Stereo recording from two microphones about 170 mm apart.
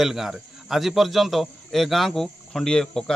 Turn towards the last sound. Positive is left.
turn(degrees=5)  # may be behind; listen again after turning